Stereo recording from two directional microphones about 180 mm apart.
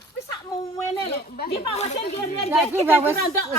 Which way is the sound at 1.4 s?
55° left (ahead or behind).